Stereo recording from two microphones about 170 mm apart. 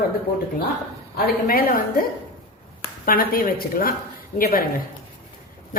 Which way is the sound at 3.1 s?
55° left (ahead or behind).